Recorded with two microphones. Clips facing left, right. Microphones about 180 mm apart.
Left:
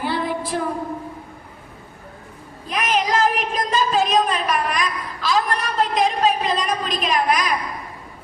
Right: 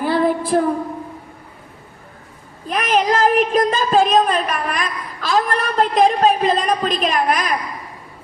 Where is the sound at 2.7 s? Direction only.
50° right (ahead or behind).